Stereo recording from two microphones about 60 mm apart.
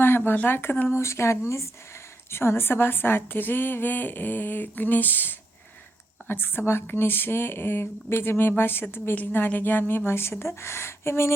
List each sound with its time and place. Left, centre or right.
0.4 s a woman's voice: left
1.0 s a woman's voice: left